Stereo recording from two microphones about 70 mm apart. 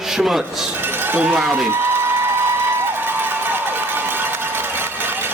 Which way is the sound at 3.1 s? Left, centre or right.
Right.